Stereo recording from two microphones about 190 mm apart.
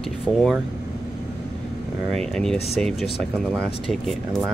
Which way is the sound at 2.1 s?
Centre (ahead or behind).